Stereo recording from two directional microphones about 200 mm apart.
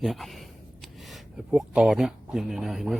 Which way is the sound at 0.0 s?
Centre (ahead or behind).